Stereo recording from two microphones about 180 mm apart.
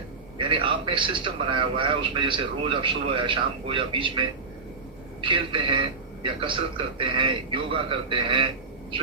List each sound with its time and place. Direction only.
0.3 s a man's voice: 30° right (ahead or behind)